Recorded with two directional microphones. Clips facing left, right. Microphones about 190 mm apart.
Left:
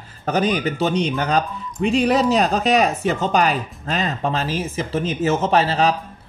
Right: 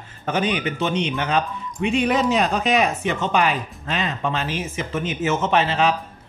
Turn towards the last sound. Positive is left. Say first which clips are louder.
# left 2 dB
turn(degrees=35)  # may be behind; listen again after turning